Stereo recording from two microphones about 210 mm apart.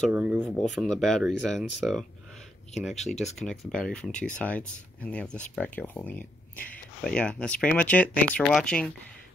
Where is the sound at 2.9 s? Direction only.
30° left (ahead or behind).